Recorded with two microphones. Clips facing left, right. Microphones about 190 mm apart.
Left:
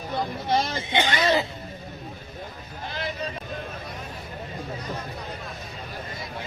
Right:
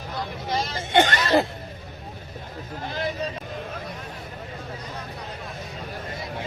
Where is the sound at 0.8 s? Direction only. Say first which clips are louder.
Right 3 dB; 50° right (ahead or behind).